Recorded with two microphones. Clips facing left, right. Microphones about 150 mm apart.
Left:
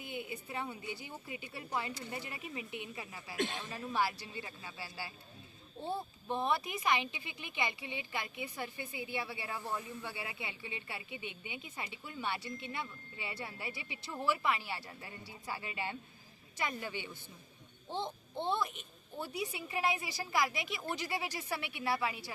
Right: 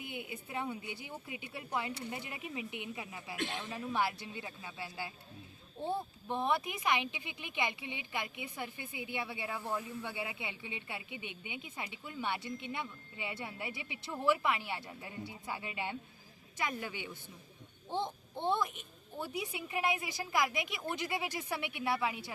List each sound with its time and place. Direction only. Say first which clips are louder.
0.0 s a woman's voice: left 1 dB; 15° right (ahead or behind)
9.5 s a man's voice: right 2 dB; 5° right (ahead or behind)
10.2 s a woman's voice: right 3 dB; 15° right (ahead or behind)